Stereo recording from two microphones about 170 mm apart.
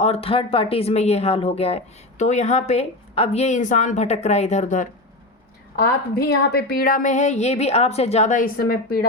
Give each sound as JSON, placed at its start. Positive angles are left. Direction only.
{"t": 0.0, "sound": "speech", "side_deg": 35}
{"t": 5.7, "sound": "a woman's voice", "side_deg": 65}